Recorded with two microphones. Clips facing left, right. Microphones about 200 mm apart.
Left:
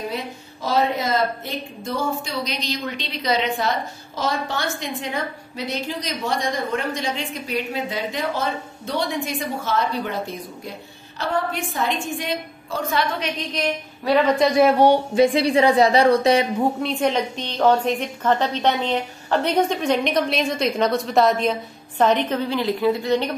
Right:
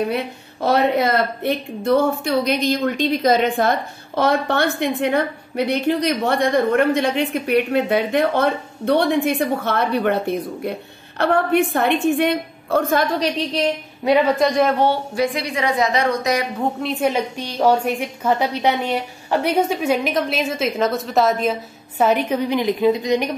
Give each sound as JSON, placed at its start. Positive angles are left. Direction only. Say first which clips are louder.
{"t": 0.1, "sound": "a woman's voice", "louder": "right 5 dB", "side_deg": -60}
{"t": 13.2, "sound": "a woman's voice", "louder": "right 6 dB", "side_deg": -30}
{"t": 14.0, "sound": "a woman's voice", "louder": "right 2 dB", "side_deg": -15}
{"t": 14.4, "sound": "a woman's voice", "louder": "left 1 dB", "side_deg": 5}
{"t": 15.3, "sound": "a woman's voice", "louder": "left 5 dB", "side_deg": 30}
{"t": 16.8, "sound": "a woman's voice", "louder": "right 1 dB", "side_deg": -5}